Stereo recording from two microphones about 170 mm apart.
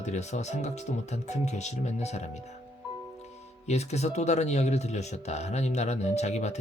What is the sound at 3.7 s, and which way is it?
Speech, 40° left (ahead or behind).